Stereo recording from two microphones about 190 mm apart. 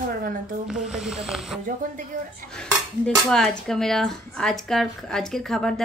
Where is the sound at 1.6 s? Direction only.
45° right (ahead or behind).